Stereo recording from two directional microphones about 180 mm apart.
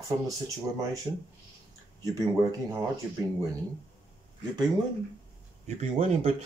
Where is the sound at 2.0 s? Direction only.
20° right (ahead or behind).